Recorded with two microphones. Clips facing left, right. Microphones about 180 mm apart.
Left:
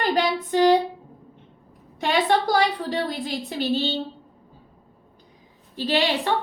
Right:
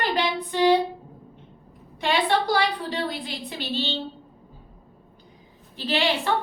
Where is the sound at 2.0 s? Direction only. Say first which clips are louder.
Left 2 dB; 45° left (ahead or behind).